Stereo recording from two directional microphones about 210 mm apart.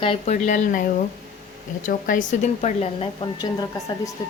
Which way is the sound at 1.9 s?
40° left (ahead or behind).